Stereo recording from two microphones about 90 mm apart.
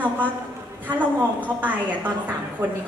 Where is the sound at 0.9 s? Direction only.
20° right (ahead or behind).